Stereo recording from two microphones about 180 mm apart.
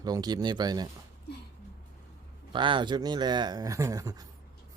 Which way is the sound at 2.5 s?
25° right (ahead or behind).